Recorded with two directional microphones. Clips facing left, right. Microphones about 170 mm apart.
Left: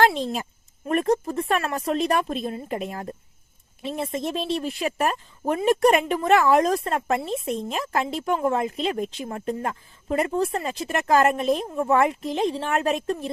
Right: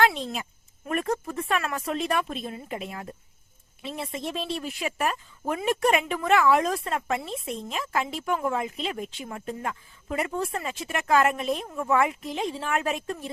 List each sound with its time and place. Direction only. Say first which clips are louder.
0.0 s a woman's voice: left 3 dB; 35° left (ahead or behind)